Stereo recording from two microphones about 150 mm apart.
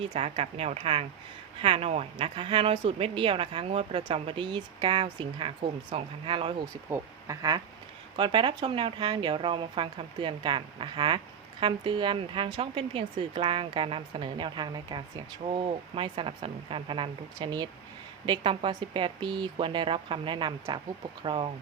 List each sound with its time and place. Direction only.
0.0 s a woman's voice: 40° right (ahead or behind)
6.9 s speech: 25° right (ahead or behind)
8.1 s a woman's voice: 35° right (ahead or behind)